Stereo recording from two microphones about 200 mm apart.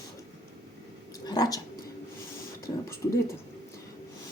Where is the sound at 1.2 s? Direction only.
20° left (ahead or behind).